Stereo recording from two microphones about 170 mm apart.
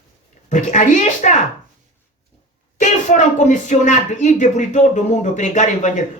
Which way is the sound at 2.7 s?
45° left (ahead or behind).